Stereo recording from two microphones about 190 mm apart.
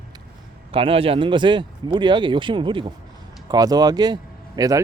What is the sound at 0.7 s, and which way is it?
A man's voice, 30° right (ahead or behind).